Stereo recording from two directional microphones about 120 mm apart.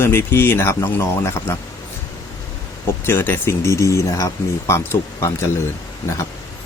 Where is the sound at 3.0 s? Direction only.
20° left (ahead or behind).